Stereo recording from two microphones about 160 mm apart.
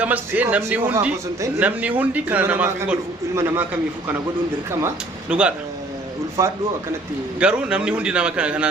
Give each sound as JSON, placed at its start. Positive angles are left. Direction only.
{"t": 0.0, "sound": "a man's voice", "side_deg": -10}
{"t": 5.3, "sound": "a man's voice", "side_deg": -5}
{"t": 6.4, "sound": "a man's voice", "side_deg": -20}
{"t": 7.3, "sound": "a man's voice", "side_deg": -5}